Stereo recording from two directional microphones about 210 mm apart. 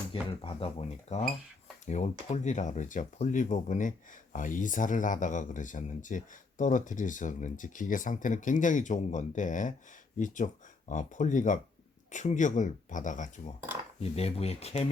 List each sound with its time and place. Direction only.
0.1 s speech: 25° left (ahead or behind)